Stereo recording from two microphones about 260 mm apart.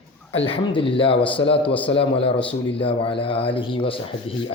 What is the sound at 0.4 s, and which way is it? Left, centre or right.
Speech, left.